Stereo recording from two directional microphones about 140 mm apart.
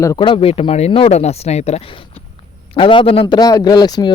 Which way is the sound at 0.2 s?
40° left (ahead or behind).